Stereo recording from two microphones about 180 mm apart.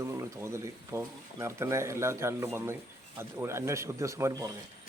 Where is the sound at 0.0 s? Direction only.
15° right (ahead or behind).